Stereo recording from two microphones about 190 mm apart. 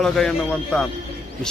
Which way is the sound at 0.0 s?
5° left (ahead or behind).